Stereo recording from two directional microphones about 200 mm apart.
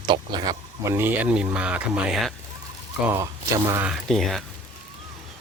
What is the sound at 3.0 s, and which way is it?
Speech, 15° right (ahead or behind).